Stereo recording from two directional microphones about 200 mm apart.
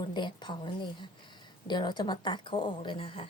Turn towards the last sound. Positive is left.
turn(degrees=25)  # may be behind; listen again after turning